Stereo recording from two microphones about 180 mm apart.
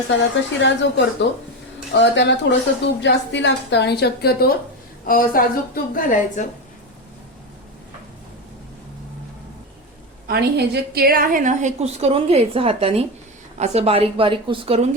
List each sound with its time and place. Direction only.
0.2 s a woman's voice: 80° left; by 6.5 s 45° left (ahead or behind)
10.2 s a woman's voice: 60° right (ahead or behind); by 14.8 s 30° right (ahead or behind)